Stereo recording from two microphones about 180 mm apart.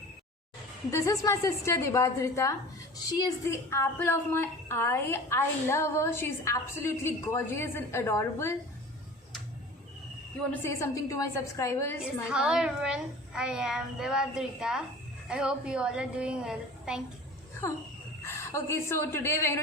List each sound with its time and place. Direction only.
0.9 s a woman's voice: 20° left (ahead or behind)
10.5 s a woman's voice: 15° left (ahead or behind)
12.3 s a child's voice: 5° right (ahead or behind)
18.2 s a woman's voice: 15° left (ahead or behind)